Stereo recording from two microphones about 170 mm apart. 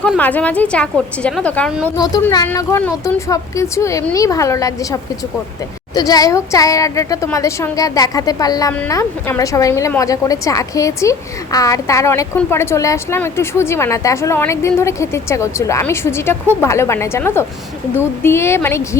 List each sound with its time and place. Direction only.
0.2 s a woman's voice: 10° left (ahead or behind)
2.3 s a woman's voice: 20° left (ahead or behind)